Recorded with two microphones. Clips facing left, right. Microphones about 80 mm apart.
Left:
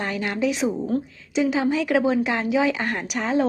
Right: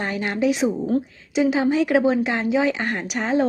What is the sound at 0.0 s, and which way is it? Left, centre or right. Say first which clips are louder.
Speech: right 1 dB; centre.